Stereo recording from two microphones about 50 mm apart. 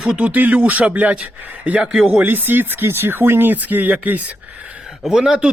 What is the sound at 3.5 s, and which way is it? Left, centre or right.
Speech, right.